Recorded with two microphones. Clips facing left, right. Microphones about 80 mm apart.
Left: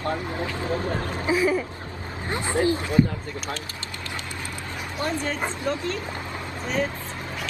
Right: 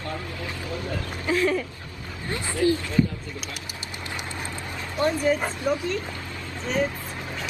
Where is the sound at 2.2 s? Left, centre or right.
Left.